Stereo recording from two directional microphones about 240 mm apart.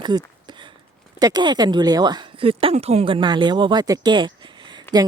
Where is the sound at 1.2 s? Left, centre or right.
Centre.